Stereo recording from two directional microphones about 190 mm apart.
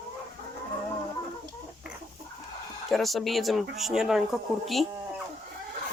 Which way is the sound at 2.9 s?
Centre (ahead or behind).